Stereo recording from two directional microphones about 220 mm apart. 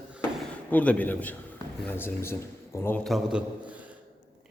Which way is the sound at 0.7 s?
5° left (ahead or behind).